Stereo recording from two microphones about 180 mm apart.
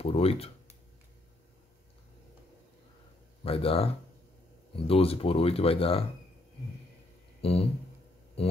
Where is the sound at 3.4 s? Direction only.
30° left (ahead or behind).